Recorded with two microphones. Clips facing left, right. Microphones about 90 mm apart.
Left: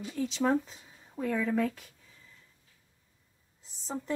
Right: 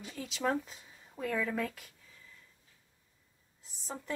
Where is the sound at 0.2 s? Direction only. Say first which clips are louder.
Left 5 dB; centre (ahead or behind).